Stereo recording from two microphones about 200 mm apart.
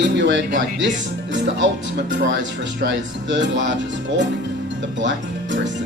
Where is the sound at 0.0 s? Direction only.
60° right (ahead or behind).